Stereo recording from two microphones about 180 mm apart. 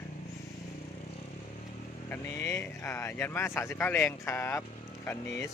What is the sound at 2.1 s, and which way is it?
Speech, 10° left (ahead or behind).